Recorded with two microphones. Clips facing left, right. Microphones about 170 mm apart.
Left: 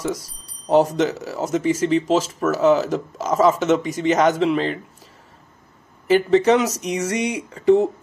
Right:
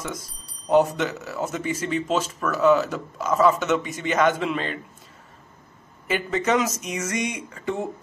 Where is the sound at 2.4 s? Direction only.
40° left (ahead or behind).